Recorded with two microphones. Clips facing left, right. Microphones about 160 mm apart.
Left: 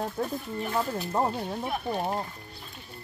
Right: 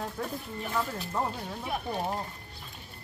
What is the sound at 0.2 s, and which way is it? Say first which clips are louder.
Speech: left 4 dB; 30° left (ahead or behind).